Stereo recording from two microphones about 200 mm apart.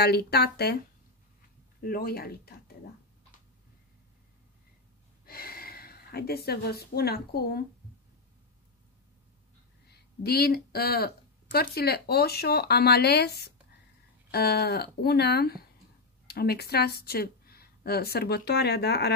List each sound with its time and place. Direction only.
0.0 s speech: 55° left (ahead or behind)
1.8 s speech: 50° left (ahead or behind)
5.2 s speech: 50° left (ahead or behind)
9.8 s speech: 50° left (ahead or behind)